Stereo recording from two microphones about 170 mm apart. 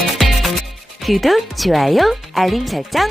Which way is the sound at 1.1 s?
Centre (ahead or behind).